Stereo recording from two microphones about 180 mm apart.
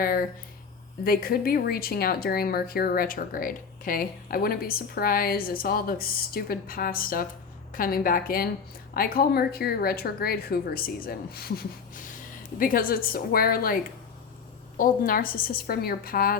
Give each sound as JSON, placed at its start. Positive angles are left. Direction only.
{"t": 0.0, "sound": "a woman's voice", "side_deg": 55}
{"t": 14.8, "sound": "a woman's voice", "side_deg": 50}